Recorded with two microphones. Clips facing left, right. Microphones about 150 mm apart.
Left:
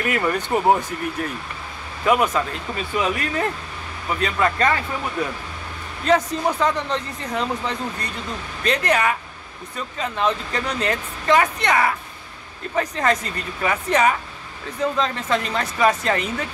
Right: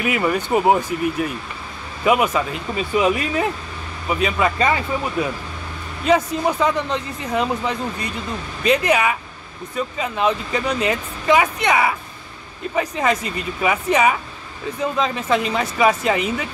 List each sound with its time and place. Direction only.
0.0 s speech: 5° right (ahead or behind)
6.0 s speech: 5° right (ahead or behind)